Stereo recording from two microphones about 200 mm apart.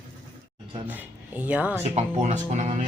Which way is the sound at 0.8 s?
10° right (ahead or behind).